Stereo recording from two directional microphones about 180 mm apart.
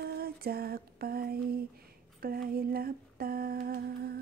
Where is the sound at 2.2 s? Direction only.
55° right (ahead or behind).